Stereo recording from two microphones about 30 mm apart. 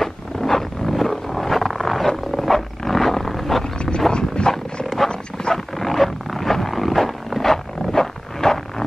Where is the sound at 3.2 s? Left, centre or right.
Centre.